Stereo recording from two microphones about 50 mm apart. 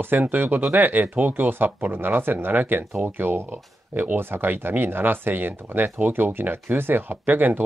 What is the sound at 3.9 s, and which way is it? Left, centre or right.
Speech, right.